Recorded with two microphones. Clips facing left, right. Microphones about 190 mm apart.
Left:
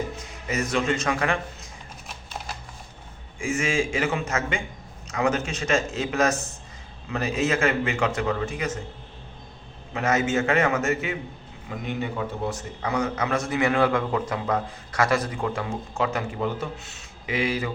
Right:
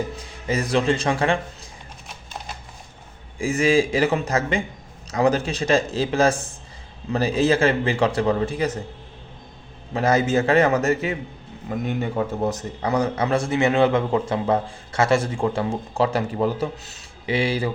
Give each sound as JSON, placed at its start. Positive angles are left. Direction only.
{"t": 0.2, "sound": "a man's voice", "side_deg": -30}
{"t": 3.3, "sound": "a man's voice", "side_deg": -35}
{"t": 9.9, "sound": "a man's voice", "side_deg": -35}